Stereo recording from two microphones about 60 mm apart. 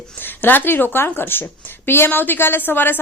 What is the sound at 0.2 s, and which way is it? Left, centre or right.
A woman's voice, left.